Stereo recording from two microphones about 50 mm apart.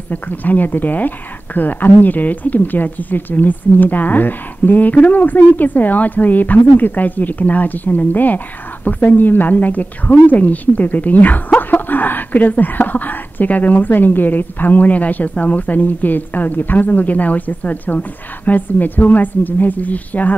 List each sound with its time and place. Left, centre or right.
0.1 s a woman's voice: left